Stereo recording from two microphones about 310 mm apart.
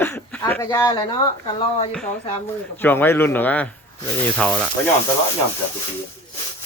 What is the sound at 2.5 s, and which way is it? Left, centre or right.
Speech, centre.